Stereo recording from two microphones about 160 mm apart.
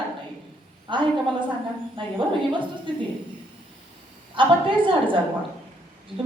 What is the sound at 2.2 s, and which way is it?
Speech, 30° right (ahead or behind).